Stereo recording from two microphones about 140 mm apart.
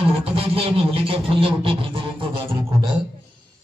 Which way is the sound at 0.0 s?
40° right (ahead or behind).